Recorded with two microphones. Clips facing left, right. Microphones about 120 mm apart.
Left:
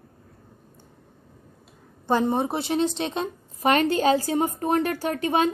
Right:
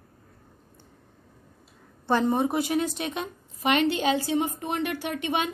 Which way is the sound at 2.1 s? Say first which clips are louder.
Left 1 dB; 20° left (ahead or behind).